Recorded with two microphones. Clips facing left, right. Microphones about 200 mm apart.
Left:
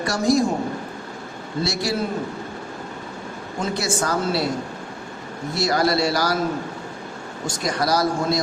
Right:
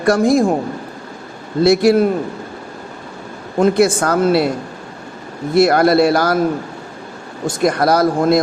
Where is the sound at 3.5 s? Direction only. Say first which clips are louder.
Right 12 dB; 55° right (ahead or behind).